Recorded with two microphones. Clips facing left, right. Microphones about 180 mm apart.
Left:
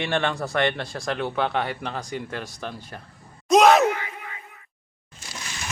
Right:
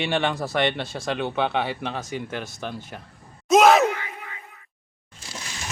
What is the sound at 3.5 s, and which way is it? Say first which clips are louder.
Gasp: even; centre (ahead or behind).